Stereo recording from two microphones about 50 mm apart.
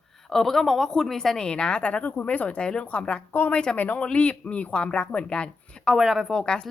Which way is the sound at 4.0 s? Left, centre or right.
Left.